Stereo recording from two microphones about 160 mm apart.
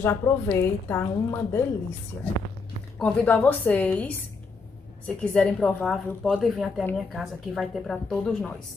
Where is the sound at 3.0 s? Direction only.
10° left (ahead or behind).